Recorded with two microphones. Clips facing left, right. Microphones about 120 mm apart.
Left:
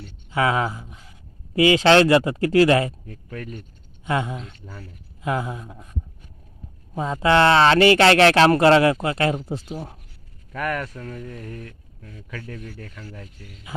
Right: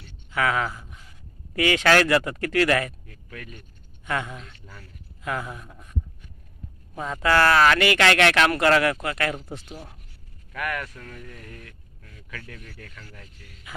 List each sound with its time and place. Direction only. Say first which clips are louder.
0.3 s speech: left 3 dB; 25° left (ahead or behind)
6.9 s speech: left 4 dB; 25° left (ahead or behind)